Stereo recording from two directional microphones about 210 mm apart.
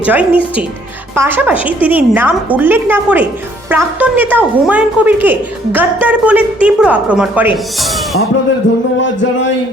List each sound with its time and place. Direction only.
0.0 s a woman's voice: 5° right (ahead or behind)
8.7 s music: 65° left (ahead or behind)